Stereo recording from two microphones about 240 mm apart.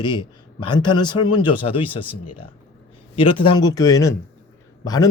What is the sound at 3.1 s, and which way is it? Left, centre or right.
A man's voice, left.